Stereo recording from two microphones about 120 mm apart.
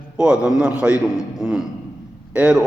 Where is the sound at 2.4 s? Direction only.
10° right (ahead or behind).